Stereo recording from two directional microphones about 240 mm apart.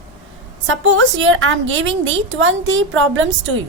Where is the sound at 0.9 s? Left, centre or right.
Right.